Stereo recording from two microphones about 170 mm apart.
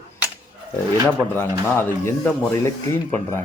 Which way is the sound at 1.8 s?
15° left (ahead or behind).